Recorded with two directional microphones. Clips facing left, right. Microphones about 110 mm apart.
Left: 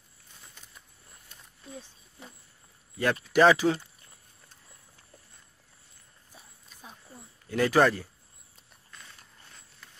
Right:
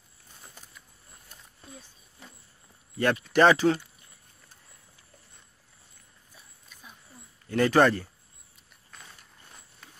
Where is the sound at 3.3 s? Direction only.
5° left (ahead or behind).